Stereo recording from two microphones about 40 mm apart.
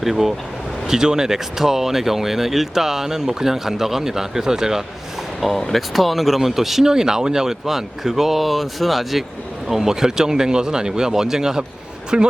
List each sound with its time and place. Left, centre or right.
0.0 s speech: centre
5.4 s speech: centre
9.6 s a man's voice: centre